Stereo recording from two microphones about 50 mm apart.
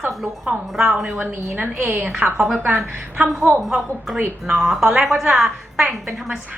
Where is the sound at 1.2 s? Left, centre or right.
Right.